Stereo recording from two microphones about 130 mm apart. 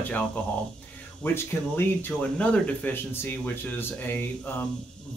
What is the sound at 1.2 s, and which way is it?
Speech, 15° left (ahead or behind).